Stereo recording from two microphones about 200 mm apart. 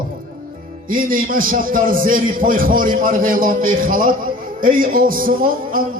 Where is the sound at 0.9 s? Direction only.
45° right (ahead or behind).